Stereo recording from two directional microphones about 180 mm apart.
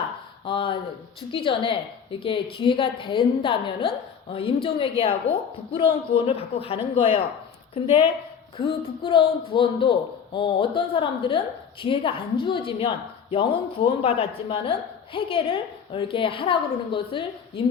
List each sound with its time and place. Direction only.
0.4 s a woman's voice: 30° left (ahead or behind)
8.5 s a woman's voice: 25° left (ahead or behind)